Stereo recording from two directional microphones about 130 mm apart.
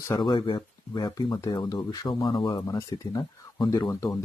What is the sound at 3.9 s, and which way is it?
Speech, 25° left (ahead or behind).